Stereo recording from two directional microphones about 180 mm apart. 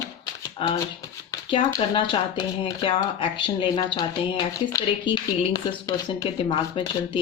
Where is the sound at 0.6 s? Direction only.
30° left (ahead or behind).